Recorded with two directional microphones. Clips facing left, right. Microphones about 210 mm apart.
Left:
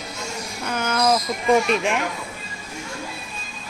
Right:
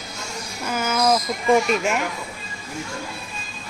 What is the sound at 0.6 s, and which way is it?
Speech, 5° right (ahead or behind).